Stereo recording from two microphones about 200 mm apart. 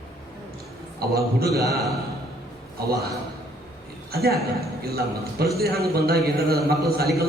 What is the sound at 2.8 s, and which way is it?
Speech, 50° right (ahead or behind).